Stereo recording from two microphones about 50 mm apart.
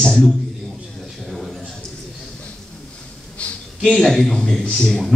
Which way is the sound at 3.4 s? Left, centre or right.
Left.